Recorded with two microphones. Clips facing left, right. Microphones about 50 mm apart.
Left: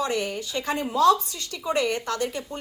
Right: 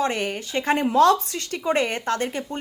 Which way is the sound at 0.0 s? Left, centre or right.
Right.